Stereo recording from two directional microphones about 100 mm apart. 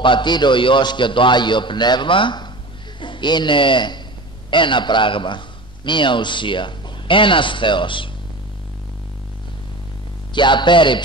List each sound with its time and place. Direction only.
0.0 s a man's voice: 50° left (ahead or behind)
10.3 s a man's voice: 50° left (ahead or behind)